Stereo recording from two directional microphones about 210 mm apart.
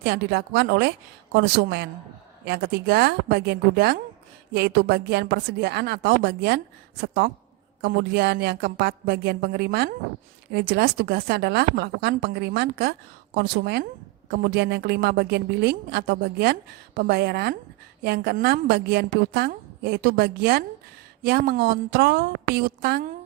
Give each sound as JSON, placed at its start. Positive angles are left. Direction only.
{"t": 0.0, "sound": "speech", "side_deg": -50}